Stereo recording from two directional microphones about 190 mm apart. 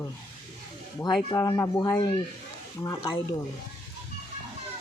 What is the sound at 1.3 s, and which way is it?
Speech, 20° left (ahead or behind).